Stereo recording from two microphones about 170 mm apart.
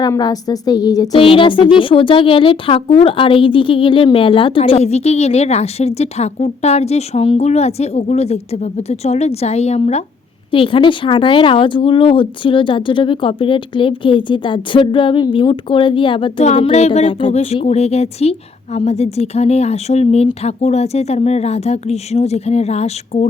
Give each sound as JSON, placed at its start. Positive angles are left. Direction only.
{"t": 0.0, "sound": "speech", "side_deg": 25}